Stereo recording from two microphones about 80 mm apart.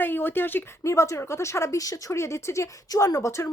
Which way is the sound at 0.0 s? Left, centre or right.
Left.